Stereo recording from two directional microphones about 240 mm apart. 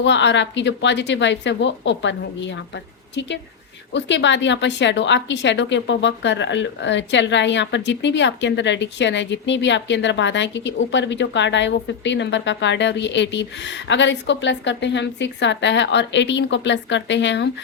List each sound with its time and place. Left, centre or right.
0.0 s a woman's voice: left